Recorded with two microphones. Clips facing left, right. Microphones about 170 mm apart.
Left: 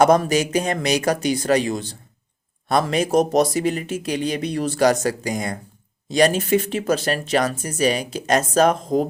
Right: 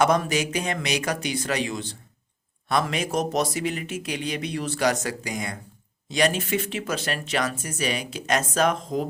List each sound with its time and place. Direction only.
0.0 s speech: 40° left (ahead or behind)